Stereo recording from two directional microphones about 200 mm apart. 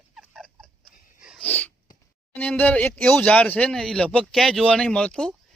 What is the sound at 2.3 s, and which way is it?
A man's voice, 10° left (ahead or behind).